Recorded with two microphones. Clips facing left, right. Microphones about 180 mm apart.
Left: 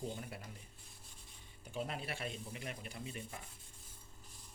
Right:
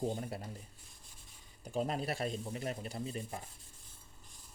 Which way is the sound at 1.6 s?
40° right (ahead or behind).